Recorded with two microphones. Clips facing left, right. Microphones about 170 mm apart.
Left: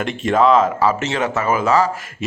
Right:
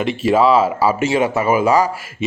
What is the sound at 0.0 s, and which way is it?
Speech, 5° right (ahead or behind).